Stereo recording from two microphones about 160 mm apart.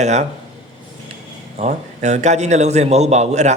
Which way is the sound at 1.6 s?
45° right (ahead or behind).